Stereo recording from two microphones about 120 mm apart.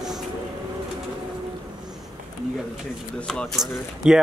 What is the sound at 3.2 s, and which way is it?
Speech, centre (ahead or behind).